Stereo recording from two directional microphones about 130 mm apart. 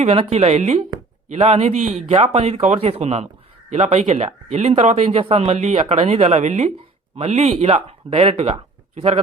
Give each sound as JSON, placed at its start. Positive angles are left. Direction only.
{"t": 0.0, "sound": "speech", "side_deg": -50}